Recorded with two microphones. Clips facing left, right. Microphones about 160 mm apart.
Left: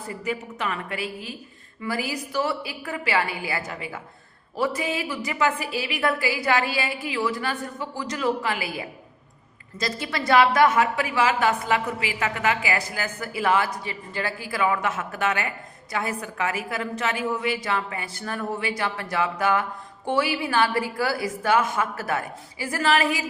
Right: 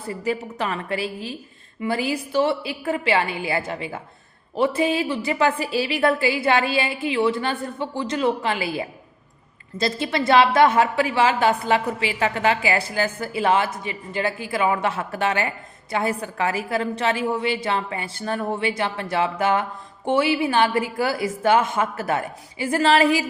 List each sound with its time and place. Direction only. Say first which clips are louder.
0.1 s a woman's voice: right 5 dB; 35° right (ahead or behind)